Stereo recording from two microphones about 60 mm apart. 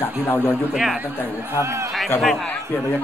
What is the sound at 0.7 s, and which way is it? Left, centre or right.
Speech, centre.